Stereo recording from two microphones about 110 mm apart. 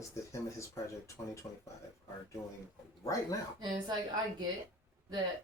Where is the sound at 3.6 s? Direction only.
40° right (ahead or behind).